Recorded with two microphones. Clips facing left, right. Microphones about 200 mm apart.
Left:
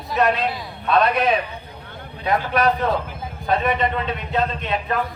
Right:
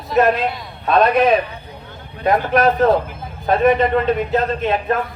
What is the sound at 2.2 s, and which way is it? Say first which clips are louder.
A man's voice: right 4 dB; 50° right (ahead or behind).